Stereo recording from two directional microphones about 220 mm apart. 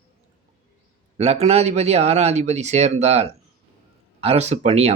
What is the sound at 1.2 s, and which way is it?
Speech, 30° right (ahead or behind).